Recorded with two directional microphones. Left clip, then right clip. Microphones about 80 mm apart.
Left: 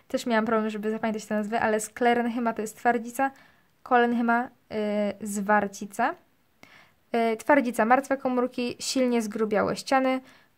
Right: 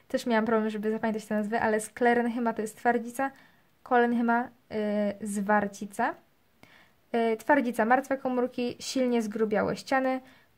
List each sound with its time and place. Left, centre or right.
0.1 s a woman's voice: left